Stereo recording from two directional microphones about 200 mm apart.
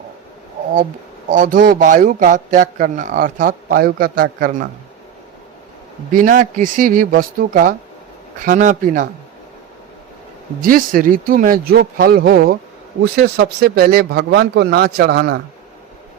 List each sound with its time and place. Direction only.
1.3 s a man's voice: 40° right (ahead or behind)
6.1 s a man's voice: 40° right (ahead or behind)
10.6 s a man's voice: 45° right (ahead or behind)